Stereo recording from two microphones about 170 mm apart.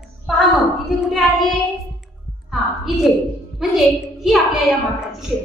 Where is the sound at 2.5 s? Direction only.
Centre (ahead or behind).